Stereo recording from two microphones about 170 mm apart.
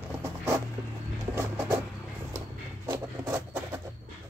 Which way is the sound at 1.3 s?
15° right (ahead or behind).